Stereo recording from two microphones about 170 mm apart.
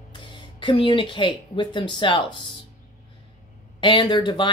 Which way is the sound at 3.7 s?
30° left (ahead or behind).